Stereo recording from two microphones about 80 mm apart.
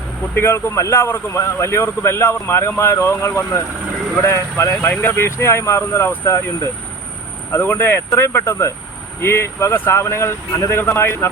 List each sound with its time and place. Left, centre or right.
0.3 s speech: left